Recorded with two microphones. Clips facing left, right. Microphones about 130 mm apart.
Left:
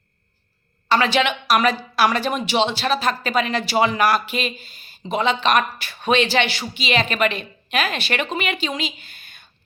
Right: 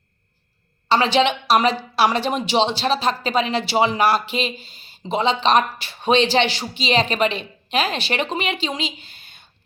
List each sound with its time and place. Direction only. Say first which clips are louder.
0.9 s speech: right 2 dB; 30° right (ahead or behind)